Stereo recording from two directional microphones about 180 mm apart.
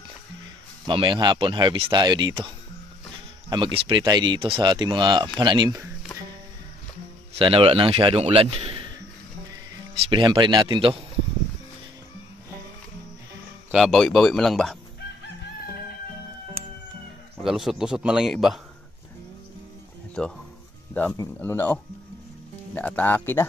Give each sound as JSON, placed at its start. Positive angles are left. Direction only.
{"t": 0.8, "sound": "speech", "side_deg": -25}
{"t": 7.3, "sound": "a man's voice", "side_deg": -30}
{"t": 10.0, "sound": "speech", "side_deg": -25}
{"t": 13.7, "sound": "a man's voice", "side_deg": 0}
{"t": 17.4, "sound": "a man's voice", "side_deg": 0}
{"t": 20.2, "sound": "a man's voice", "side_deg": 5}
{"t": 22.8, "sound": "speech", "side_deg": 10}